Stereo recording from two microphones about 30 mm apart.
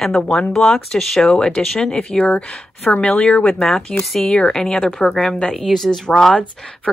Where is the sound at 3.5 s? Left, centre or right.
Centre.